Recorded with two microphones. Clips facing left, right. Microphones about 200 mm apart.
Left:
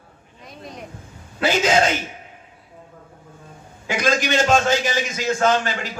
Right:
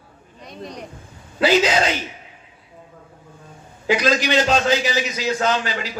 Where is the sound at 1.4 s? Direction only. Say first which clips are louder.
Right 3 dB; 50° left (ahead or behind).